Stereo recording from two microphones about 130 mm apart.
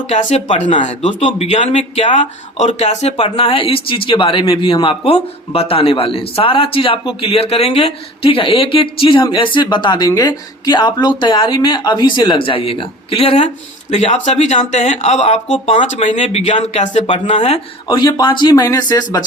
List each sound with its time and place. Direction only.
0.1 s speech: 60° left (ahead or behind)
0.7 s speech: 65° left (ahead or behind)
1.0 s speech: 45° left (ahead or behind)
1.5 s speech: 60° left (ahead or behind)
17.8 s speech: 35° left (ahead or behind)